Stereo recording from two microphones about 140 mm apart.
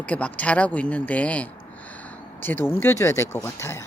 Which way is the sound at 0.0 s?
10° left (ahead or behind).